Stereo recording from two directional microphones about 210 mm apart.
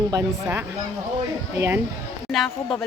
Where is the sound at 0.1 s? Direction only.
10° right (ahead or behind).